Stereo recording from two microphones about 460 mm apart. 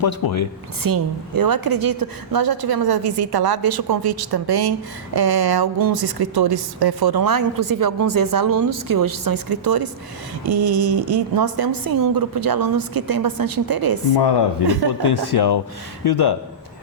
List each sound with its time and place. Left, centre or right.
0.0 s speech: left
0.8 s a woman's voice: right
15.0 s speech: left